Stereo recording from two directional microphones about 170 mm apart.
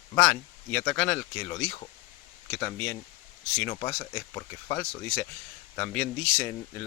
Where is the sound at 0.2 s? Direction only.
5° left (ahead or behind).